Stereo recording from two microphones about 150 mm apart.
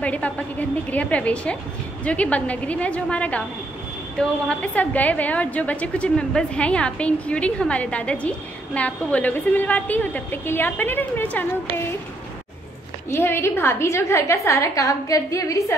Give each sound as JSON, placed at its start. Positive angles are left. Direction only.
{"t": 0.0, "sound": "a woman's voice", "side_deg": 10}
{"t": 13.1, "sound": "a woman's voice", "side_deg": 15}